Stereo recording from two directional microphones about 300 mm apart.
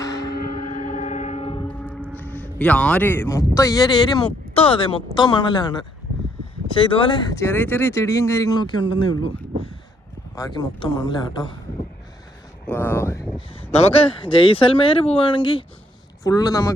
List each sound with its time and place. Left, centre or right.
0.0 s civil defense siren: centre
0.4 s train: left
1.6 s a sound: centre
2.1 s speech: centre
10.3 s speech: centre
12.6 s speech: centre